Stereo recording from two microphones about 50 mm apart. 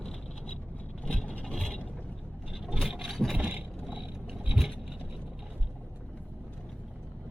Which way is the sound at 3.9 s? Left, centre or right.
Right.